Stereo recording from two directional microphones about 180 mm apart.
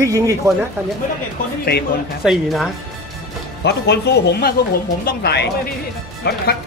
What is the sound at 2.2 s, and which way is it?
Speech, 5° right (ahead or behind).